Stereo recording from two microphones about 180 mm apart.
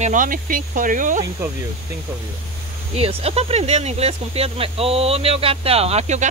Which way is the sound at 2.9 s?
35° right (ahead or behind).